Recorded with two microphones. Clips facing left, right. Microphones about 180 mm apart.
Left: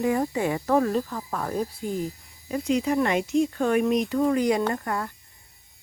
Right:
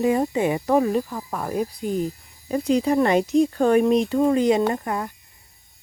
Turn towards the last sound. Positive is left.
turn(degrees=-20)  # may be behind; listen again after turning